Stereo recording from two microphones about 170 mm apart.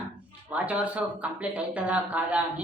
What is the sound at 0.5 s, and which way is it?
A woman's voice, 10° right (ahead or behind).